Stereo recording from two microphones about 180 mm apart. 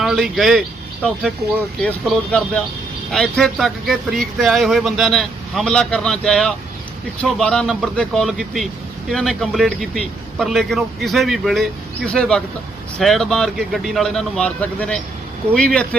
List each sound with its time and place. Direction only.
0.0 s a man's voice: centre (ahead or behind)
1.8 s speech: 5° left (ahead or behind)